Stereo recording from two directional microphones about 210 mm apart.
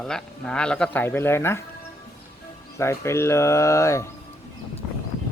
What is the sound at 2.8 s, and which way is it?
Speech, 15° left (ahead or behind).